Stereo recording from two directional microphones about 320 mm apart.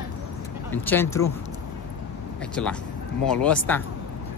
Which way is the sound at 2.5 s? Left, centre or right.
Centre.